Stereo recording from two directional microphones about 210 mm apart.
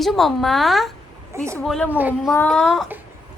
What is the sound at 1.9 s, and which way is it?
Speech, 10° right (ahead or behind).